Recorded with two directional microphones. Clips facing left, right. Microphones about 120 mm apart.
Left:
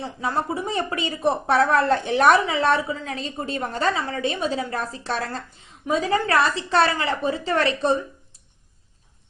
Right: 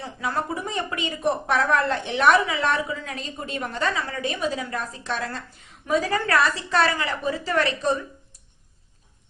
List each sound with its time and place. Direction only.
0.0 s a woman's voice: 20° left (ahead or behind)
5.8 s a woman's voice: 20° left (ahead or behind)